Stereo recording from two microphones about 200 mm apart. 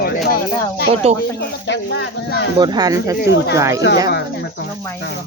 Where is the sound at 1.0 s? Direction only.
30° right (ahead or behind).